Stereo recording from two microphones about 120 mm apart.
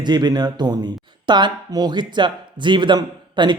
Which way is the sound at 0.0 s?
35° right (ahead or behind).